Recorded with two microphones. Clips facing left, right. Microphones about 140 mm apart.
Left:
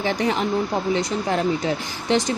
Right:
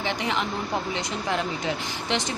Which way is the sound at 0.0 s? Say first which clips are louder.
Left 5 dB; 40° left (ahead or behind).